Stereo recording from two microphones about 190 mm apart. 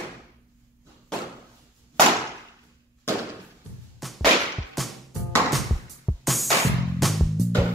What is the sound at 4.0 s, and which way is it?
Music, centre (ahead or behind).